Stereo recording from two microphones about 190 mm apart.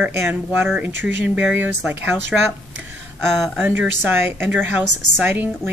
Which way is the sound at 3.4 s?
5° right (ahead or behind).